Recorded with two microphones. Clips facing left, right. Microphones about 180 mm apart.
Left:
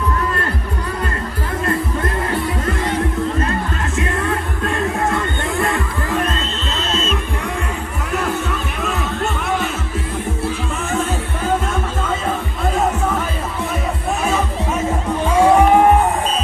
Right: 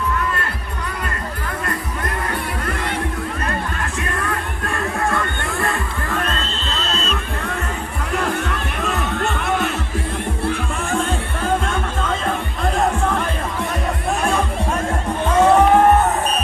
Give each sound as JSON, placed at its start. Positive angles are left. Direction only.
{"t": 4.0, "sound": "music", "side_deg": 25}
{"t": 12.7, "sound": "music", "side_deg": 5}
{"t": 14.3, "sound": "music", "side_deg": 5}